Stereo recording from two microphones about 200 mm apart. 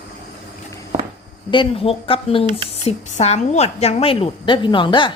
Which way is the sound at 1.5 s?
25° left (ahead or behind).